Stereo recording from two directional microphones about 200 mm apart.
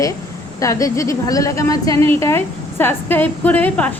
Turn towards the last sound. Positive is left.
turn(degrees=10)  # may be behind; listen again after turning